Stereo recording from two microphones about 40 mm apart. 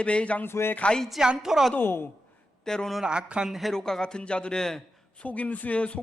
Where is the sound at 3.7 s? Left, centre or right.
Centre.